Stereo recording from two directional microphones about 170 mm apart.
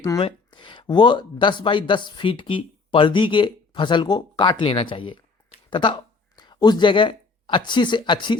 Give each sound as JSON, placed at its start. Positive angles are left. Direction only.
{"t": 0.2, "sound": "speech", "side_deg": 30}